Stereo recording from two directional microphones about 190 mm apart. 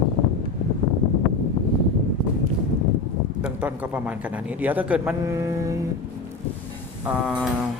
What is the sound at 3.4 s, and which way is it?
Speech, 10° right (ahead or behind).